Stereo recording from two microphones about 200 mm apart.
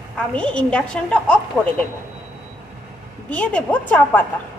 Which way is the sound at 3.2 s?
5° left (ahead or behind).